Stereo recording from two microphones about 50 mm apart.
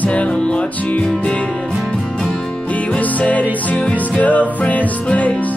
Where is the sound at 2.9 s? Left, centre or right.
Left.